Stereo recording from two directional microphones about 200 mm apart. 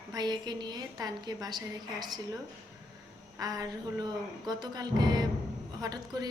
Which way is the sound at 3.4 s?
20° right (ahead or behind).